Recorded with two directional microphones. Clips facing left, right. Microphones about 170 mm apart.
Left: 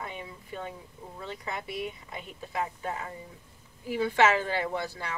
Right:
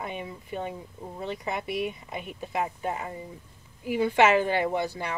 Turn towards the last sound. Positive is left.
turn(degrees=-15)  # may be behind; listen again after turning